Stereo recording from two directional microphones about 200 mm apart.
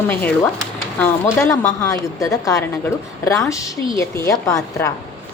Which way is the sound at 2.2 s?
15° left (ahead or behind).